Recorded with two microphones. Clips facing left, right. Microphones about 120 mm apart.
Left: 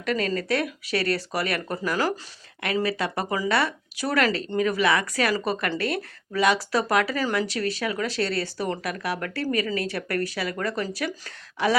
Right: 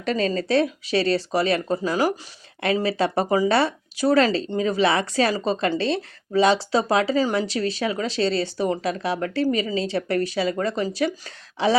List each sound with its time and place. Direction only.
0.0 s speech: 25° right (ahead or behind)